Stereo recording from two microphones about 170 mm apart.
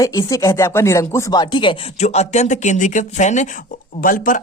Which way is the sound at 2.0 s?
40° left (ahead or behind).